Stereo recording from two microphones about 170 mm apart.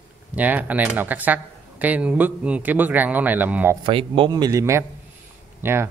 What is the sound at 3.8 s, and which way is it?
A man's voice, 30° right (ahead or behind).